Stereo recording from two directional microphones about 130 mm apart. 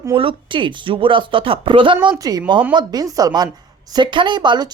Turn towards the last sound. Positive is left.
turn(degrees=-35)  # may be behind; listen again after turning